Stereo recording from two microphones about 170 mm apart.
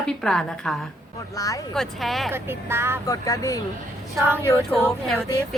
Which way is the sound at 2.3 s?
15° right (ahead or behind).